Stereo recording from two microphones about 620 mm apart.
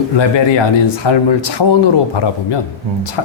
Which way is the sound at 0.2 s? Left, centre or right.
Left.